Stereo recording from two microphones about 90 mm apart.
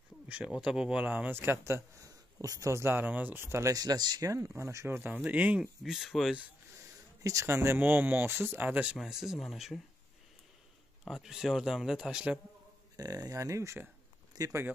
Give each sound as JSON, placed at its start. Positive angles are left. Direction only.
{"t": 0.3, "sound": "a man's voice", "side_deg": -10}
{"t": 5.8, "sound": "speech", "side_deg": -5}
{"t": 7.2, "sound": "a man's voice", "side_deg": -35}
{"t": 8.9, "sound": "speech", "side_deg": -5}
{"t": 11.1, "sound": "speech", "side_deg": -5}
{"t": 12.9, "sound": "speech", "side_deg": -45}